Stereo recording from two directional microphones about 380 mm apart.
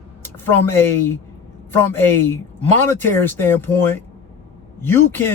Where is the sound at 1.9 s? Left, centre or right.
Centre.